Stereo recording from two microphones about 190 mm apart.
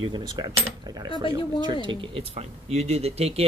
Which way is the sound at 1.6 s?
25° right (ahead or behind).